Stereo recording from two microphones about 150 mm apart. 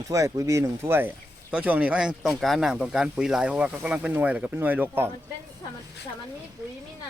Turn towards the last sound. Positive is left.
turn(degrees=-15)  # may be behind; listen again after turning